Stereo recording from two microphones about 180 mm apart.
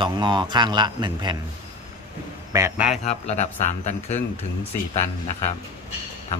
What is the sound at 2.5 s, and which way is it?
Speech, 15° right (ahead or behind).